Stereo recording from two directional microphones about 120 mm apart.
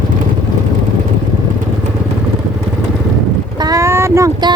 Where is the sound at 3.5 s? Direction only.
30° right (ahead or behind).